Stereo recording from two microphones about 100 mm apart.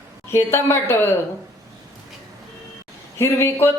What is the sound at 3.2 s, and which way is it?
Speech, 25° left (ahead or behind).